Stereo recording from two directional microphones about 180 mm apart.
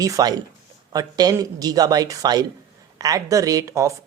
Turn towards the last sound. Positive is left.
turn(degrees=-15)  # may be behind; listen again after turning